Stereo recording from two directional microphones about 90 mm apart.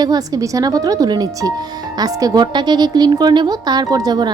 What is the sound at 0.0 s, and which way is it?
A woman's voice, 45° right (ahead or behind).